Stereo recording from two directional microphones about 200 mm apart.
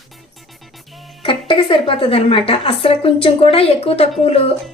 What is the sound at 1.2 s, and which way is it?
A woman's voice, 25° left (ahead or behind).